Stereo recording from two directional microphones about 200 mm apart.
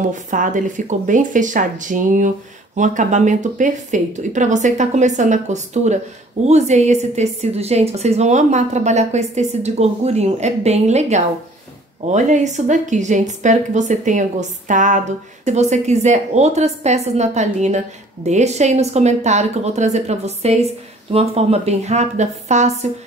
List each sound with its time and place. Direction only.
0.1 s speech: 40° right (ahead or behind)